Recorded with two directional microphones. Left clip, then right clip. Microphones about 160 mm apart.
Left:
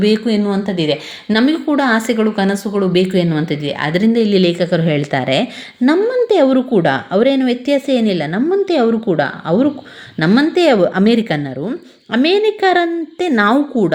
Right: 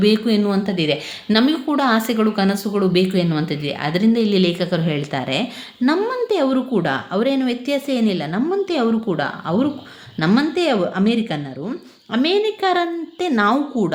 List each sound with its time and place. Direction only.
0.0 s a woman's voice: 15° left (ahead or behind); by 13.9 s 35° left (ahead or behind)